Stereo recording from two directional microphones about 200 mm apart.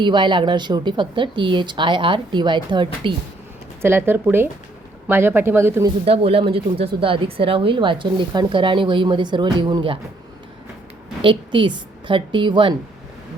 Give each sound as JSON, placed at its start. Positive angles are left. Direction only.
{"t": 0.0, "sound": "speech", "side_deg": -25}
{"t": 3.8, "sound": "speech", "side_deg": -10}
{"t": 6.1, "sound": "speech", "side_deg": -30}
{"t": 11.2, "sound": "speech", "side_deg": -25}